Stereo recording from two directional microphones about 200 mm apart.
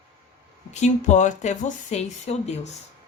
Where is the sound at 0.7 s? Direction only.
35° left (ahead or behind).